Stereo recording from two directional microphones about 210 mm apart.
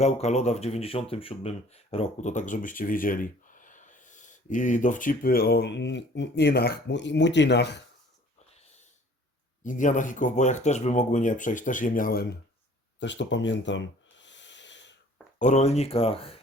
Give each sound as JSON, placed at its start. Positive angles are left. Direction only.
{"t": 0.0, "sound": "speech", "side_deg": 30}
{"t": 9.6, "sound": "speech", "side_deg": 40}
{"t": 13.0, "sound": "snort", "side_deg": 60}
{"t": 15.4, "sound": "speech", "side_deg": 35}